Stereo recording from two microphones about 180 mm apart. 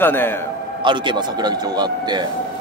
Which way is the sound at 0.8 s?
25° right (ahead or behind).